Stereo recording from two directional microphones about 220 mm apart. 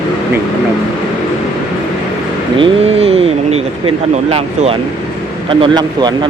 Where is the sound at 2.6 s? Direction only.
30° right (ahead or behind).